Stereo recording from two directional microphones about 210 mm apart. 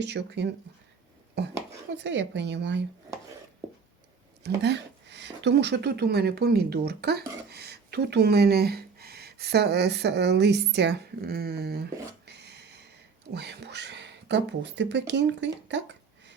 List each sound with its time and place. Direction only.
0.0 s speech: 55° right (ahead or behind)
4.4 s speech: 55° right (ahead or behind)